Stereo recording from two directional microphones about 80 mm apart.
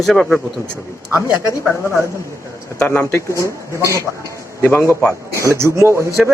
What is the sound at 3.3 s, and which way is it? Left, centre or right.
Speech, right.